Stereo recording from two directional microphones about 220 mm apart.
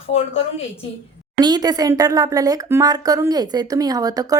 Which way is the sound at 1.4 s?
15° right (ahead or behind).